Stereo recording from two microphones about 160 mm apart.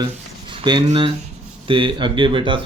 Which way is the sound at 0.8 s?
40° right (ahead or behind).